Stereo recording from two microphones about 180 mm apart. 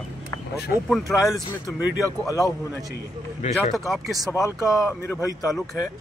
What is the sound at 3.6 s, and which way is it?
Speech, centre (ahead or behind).